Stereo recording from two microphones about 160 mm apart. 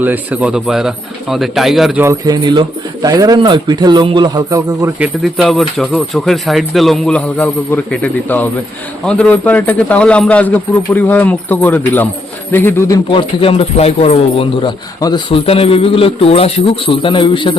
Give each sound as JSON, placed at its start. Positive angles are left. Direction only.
{"t": 0.0, "sound": "speech", "side_deg": -10}
{"t": 2.0, "sound": "speech", "side_deg": -25}
{"t": 4.9, "sound": "speech", "side_deg": -5}
{"t": 13.1, "sound": "a man's voice", "side_deg": 35}